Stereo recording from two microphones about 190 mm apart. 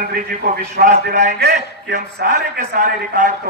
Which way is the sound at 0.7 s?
40° right (ahead or behind).